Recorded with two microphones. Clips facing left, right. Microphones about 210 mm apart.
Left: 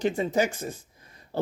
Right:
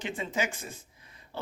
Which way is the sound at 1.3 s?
40° left (ahead or behind).